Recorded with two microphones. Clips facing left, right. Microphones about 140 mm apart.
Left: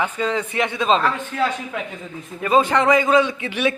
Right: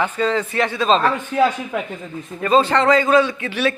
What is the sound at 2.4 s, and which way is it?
A man's voice, 15° left (ahead or behind).